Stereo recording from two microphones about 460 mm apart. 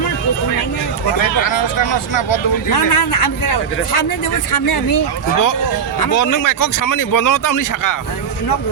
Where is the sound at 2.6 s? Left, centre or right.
Left.